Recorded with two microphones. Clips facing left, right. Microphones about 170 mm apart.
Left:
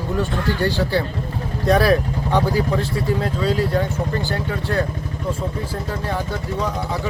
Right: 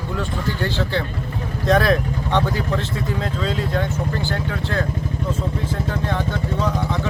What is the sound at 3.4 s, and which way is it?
Speech, 10° left (ahead or behind).